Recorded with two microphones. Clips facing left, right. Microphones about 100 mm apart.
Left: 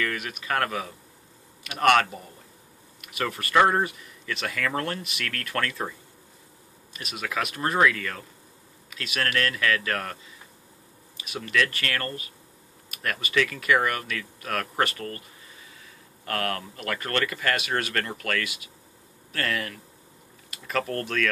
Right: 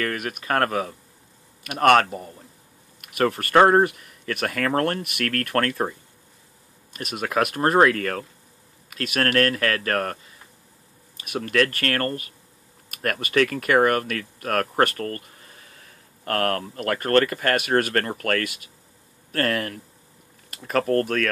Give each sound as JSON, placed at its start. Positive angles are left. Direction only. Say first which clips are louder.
{"t": 0.0, "sound": "speech", "louder": "right 3 dB", "side_deg": -45}
{"t": 6.9, "sound": "speech", "louder": "right 5 dB", "side_deg": -50}
{"t": 11.1, "sound": "speech", "louder": "right 4 dB", "side_deg": -50}